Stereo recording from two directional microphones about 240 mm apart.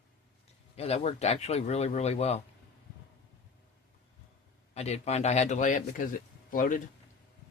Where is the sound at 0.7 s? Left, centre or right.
Left.